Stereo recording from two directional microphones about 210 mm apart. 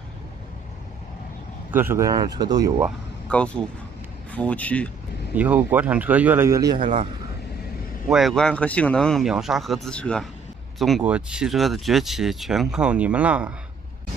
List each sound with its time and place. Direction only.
1.7 s a man's voice: 10° right (ahead or behind)
3.3 s speech: 5° left (ahead or behind)
5.3 s a man's voice: 5° right (ahead or behind)
8.1 s speech: centre (ahead or behind)